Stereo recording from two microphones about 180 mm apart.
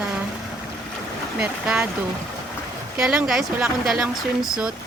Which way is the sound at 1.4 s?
5° right (ahead or behind).